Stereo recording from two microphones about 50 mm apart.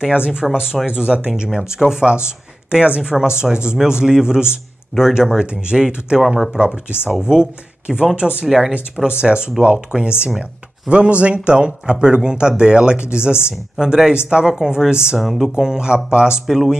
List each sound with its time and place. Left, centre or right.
0.0 s speech: centre
8.5 s speech: centre
8.7 s speech: right
15.1 s speech: centre
15.5 s speech: centre
16.4 s speech: centre